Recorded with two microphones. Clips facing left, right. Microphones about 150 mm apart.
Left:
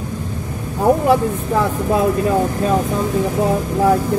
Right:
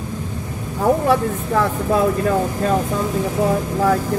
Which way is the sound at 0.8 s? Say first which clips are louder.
Left 2 dB; 15° left (ahead or behind).